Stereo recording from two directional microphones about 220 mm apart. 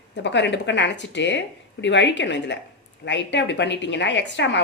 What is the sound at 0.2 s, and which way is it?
Speech, 50° left (ahead or behind).